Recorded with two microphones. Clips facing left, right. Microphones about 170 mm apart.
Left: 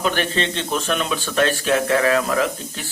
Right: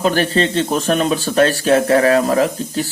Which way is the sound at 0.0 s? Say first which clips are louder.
Right 6 dB; 35° right (ahead or behind).